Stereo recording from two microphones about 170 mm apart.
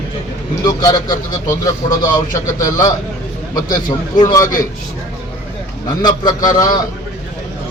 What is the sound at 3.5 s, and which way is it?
A man's voice, 25° left (ahead or behind).